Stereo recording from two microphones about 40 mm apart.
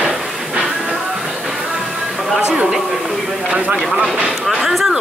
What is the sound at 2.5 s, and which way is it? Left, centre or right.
Speech, centre.